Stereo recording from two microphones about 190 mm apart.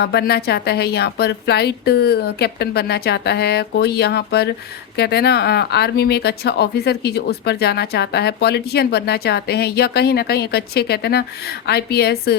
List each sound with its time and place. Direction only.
0.0 s speech: 60° left (ahead or behind)